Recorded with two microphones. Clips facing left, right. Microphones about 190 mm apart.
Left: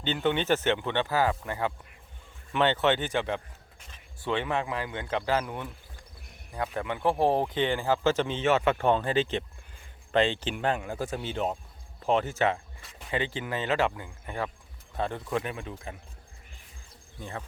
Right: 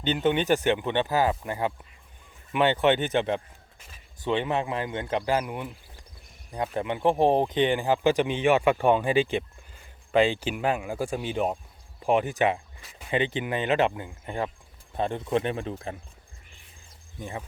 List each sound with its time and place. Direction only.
0.0 s speech: 20° right (ahead or behind)
17.2 s speech: 15° right (ahead or behind)